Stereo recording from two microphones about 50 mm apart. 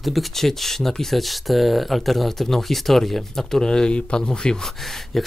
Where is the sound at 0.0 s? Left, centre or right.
Centre.